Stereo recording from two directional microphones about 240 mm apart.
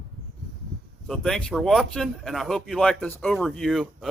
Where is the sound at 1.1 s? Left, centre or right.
Centre.